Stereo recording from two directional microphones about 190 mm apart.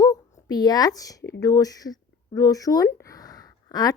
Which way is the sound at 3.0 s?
20° left (ahead or behind).